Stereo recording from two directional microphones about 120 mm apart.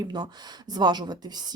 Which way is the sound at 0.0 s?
35° right (ahead or behind).